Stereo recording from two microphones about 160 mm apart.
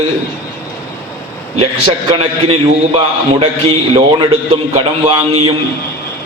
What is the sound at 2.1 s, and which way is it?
A man's voice, 35° right (ahead or behind).